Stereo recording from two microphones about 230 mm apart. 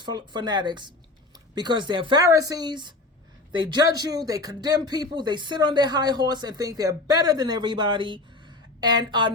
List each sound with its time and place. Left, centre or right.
0.0 s speech: centre